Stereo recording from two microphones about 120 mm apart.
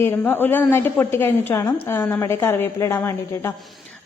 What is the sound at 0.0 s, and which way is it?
A woman's voice, 15° left (ahead or behind).